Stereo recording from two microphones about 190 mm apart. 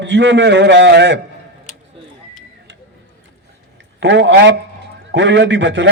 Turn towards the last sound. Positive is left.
turn(degrees=-70)  # may be behind; listen again after turning